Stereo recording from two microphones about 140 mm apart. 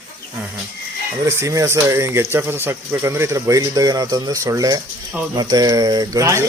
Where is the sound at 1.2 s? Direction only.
20° right (ahead or behind).